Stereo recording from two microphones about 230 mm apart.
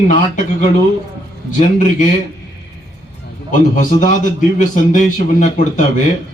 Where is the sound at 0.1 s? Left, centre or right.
Left.